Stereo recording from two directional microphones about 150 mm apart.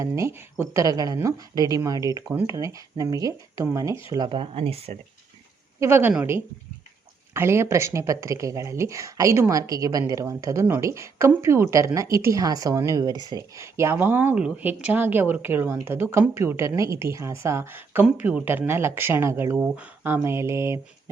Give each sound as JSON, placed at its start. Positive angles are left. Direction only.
{"t": 0.0, "sound": "speech", "side_deg": -20}
{"t": 4.1, "sound": "speech", "side_deg": -30}
{"t": 5.8, "sound": "speech", "side_deg": -15}